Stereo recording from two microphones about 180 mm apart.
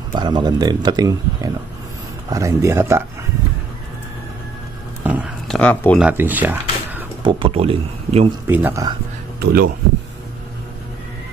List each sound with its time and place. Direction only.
0.1 s speech: 25° right (ahead or behind)
5.0 s speech: 10° right (ahead or behind)
5.5 s speech: 5° left (ahead or behind)
6.0 s speech: 10° right (ahead or behind)
7.2 s speech: 30° right (ahead or behind)
8.5 s speech: 10° right (ahead or behind)
9.4 s speech: 55° right (ahead or behind)